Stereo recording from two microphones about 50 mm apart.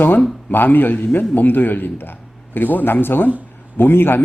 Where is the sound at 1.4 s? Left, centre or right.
Left.